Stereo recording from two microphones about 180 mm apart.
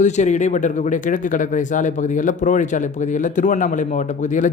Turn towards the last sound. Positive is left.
turn(degrees=45)  # may be behind; listen again after turning